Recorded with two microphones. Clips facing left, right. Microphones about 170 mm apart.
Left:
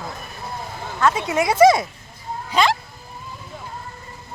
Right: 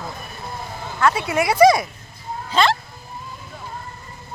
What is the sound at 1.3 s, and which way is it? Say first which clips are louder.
Speech: even; 20° left (ahead or behind).